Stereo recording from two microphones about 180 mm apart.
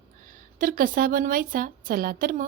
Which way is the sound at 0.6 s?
50° right (ahead or behind).